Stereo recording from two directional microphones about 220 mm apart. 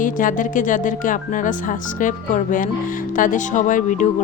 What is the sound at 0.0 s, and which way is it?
Speech, 35° left (ahead or behind).